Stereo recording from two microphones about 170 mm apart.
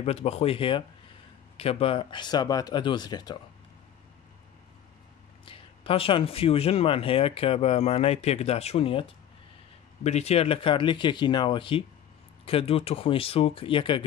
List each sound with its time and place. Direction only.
0.0 s speech: 35° left (ahead or behind)
5.4 s speech: 30° left (ahead or behind)